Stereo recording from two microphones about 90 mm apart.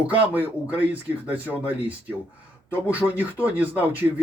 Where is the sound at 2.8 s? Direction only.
15° right (ahead or behind).